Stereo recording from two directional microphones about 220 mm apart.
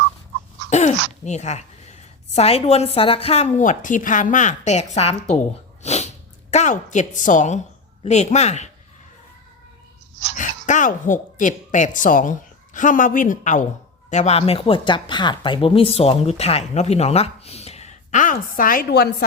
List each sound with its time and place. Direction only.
0.7 s a woman's voice: 30° left (ahead or behind)
5.8 s sneeze: 30° left (ahead or behind)
6.5 s a woman's voice: 30° left (ahead or behind)
10.3 s speech: 35° left (ahead or behind)